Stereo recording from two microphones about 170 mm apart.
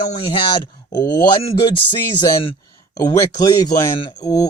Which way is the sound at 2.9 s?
20° left (ahead or behind).